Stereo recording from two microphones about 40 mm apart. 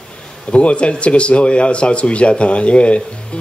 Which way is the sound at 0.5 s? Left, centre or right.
Left.